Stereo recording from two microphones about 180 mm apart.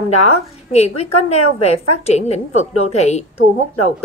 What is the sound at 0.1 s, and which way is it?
A woman's voice, 35° left (ahead or behind).